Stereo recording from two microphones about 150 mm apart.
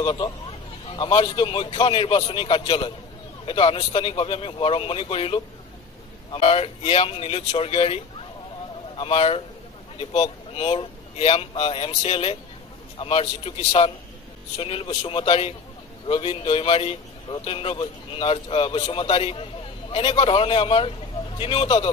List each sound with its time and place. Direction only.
0.0 s speech: 35° left (ahead or behind)
10.5 s speech: 40° left (ahead or behind)